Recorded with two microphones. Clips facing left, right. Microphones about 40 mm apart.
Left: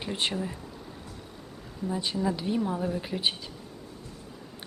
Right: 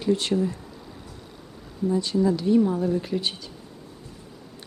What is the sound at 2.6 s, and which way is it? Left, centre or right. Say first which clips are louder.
Speech: right 6 dB; left.